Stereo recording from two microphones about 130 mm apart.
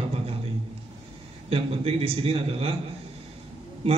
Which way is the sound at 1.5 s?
50° right (ahead or behind).